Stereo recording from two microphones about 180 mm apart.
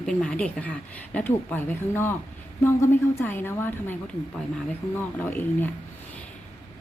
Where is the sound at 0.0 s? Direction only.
5° left (ahead or behind).